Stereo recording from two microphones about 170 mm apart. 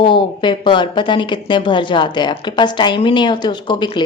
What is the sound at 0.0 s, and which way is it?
Speech, 30° left (ahead or behind).